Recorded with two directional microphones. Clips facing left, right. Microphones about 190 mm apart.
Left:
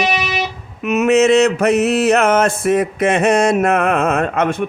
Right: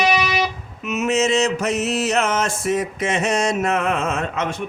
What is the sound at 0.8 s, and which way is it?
Mantra, 60° left (ahead or behind).